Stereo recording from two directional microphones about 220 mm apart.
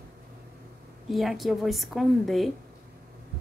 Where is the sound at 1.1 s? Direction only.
Centre (ahead or behind).